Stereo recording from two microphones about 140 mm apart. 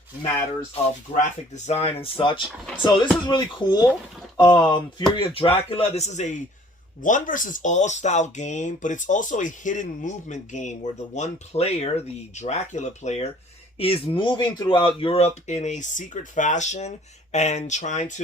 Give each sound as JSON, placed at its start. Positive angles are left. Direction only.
{"t": 1.5, "sound": "speech", "side_deg": 50}
{"t": 7.0, "sound": "speech", "side_deg": 70}
{"t": 13.7, "sound": "speech", "side_deg": 45}